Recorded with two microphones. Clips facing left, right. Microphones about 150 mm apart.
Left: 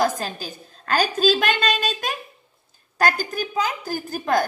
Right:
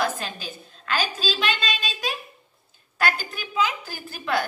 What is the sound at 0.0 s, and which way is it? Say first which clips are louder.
A woman's voice: left 4 dB; 40° left (ahead or behind).